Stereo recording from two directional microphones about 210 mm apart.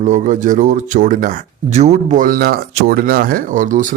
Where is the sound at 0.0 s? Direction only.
35° right (ahead or behind).